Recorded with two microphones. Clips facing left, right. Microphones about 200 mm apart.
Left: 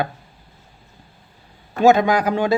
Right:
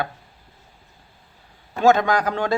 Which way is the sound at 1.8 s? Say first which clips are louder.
Left 3 dB; 10° left (ahead or behind).